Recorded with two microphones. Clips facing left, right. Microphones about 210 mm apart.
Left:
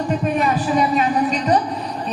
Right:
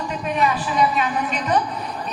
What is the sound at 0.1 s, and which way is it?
Speech, 45° left (ahead or behind).